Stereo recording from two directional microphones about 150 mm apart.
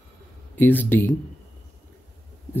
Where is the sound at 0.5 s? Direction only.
10° left (ahead or behind).